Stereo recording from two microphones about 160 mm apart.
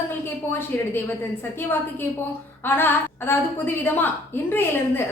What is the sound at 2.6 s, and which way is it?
Female singing, 15° left (ahead or behind).